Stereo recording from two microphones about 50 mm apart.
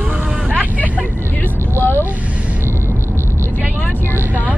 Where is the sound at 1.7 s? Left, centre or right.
Left.